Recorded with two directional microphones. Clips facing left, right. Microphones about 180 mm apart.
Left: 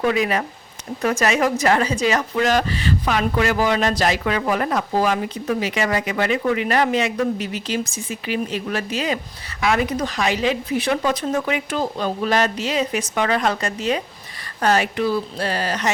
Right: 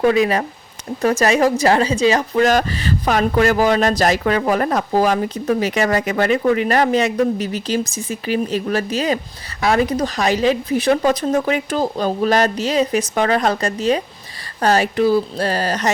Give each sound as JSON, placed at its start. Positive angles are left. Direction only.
{"t": 0.0, "sound": "speech", "side_deg": -35}